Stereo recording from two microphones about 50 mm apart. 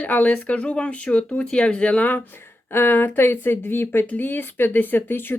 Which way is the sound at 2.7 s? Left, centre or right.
Left.